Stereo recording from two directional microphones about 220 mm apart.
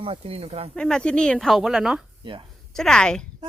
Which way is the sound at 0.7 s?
5° left (ahead or behind).